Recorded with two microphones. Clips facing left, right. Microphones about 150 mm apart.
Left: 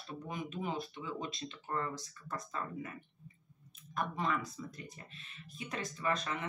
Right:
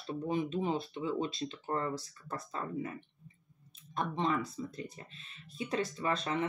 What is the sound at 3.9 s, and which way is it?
Speech, 25° right (ahead or behind).